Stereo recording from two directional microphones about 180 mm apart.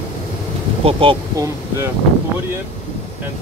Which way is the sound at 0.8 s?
30° right (ahead or behind).